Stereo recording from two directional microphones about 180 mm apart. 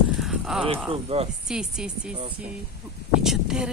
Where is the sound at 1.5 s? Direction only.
5° right (ahead or behind).